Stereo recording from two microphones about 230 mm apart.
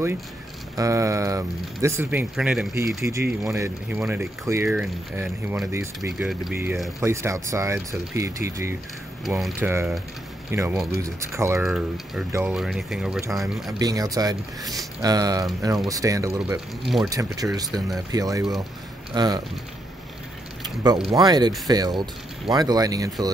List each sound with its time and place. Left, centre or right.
0.7 s speech: centre
11.6 s speech: centre
13.7 s speech: centre
16.8 s speech: centre
17.1 s speech: centre
20.8 s speech: centre